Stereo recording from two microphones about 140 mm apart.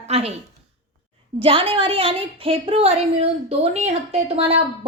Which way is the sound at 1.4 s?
40° right (ahead or behind).